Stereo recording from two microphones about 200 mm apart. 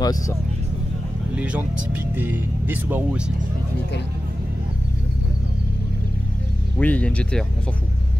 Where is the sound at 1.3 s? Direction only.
5° right (ahead or behind).